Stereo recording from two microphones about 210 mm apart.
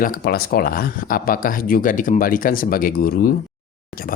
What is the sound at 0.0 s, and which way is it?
Speech, 45° left (ahead or behind).